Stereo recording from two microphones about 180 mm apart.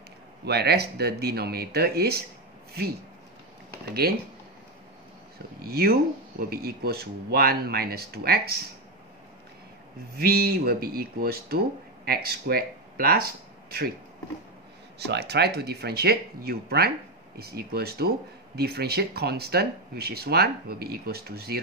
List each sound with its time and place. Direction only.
0.5 s speech: 65° right (ahead or behind)
4.0 s speech: 60° right (ahead or behind)
5.6 s speech: 60° right (ahead or behind)
10.1 s speech: 55° right (ahead or behind)
15.0 s speech: 65° right (ahead or behind)